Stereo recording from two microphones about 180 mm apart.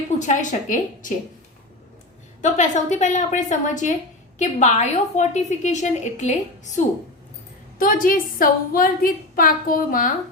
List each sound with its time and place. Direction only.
0.2 s a woman's voice: 45° left (ahead or behind)
2.4 s a woman's voice: 40° left (ahead or behind)